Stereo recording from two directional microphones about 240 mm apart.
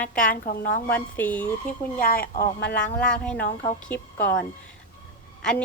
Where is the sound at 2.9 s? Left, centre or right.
Centre.